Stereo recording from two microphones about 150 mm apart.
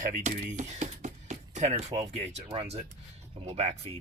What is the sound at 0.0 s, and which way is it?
Speech, 55° right (ahead or behind).